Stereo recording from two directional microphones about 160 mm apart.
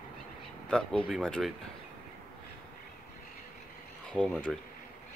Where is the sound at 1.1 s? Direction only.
Centre (ahead or behind).